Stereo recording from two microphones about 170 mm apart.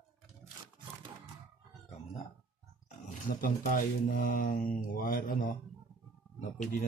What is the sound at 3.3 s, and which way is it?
Speech, 55° left (ahead or behind).